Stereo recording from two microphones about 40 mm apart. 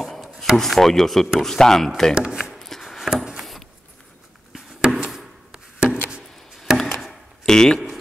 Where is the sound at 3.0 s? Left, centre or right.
Centre.